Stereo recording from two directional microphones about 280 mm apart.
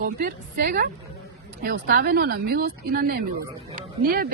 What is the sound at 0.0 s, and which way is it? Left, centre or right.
Speech, right.